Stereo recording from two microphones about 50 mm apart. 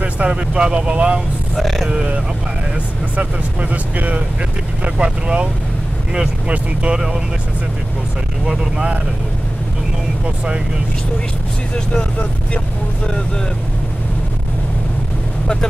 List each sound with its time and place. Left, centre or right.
0.0 s speech: right
1.6 s speech: centre
1.9 s speech: centre
3.7 s speech: right
8.5 s speech: centre
10.2 s speech: centre